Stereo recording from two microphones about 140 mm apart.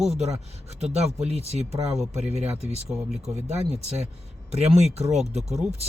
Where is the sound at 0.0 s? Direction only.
50° right (ahead or behind).